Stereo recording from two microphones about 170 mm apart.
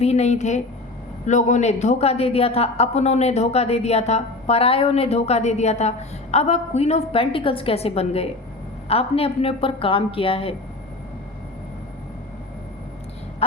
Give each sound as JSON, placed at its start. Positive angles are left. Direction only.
{"t": 0.0, "sound": "speech", "side_deg": 40}